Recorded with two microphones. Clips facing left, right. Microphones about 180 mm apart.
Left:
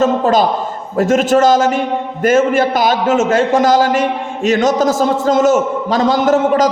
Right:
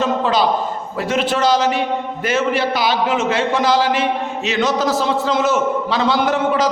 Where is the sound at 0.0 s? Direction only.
45° left (ahead or behind).